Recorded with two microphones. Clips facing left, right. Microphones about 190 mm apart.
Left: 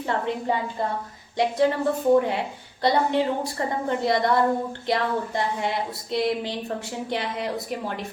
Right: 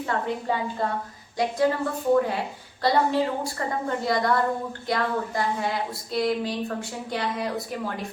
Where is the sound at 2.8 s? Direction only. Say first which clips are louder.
Left 1 dB; 20° left (ahead or behind).